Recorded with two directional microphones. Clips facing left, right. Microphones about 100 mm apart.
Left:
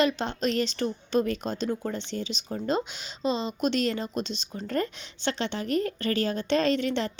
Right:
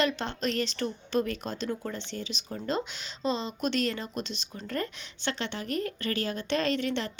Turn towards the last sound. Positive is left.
turn(degrees=25)  # may be behind; listen again after turning